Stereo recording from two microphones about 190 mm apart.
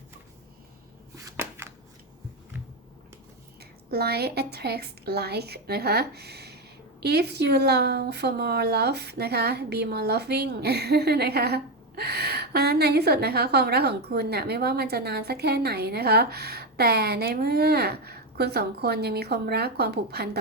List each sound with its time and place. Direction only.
1.1 s shuffling cards: 15° right (ahead or behind)
3.6 s a woman's voice: 55° right (ahead or behind)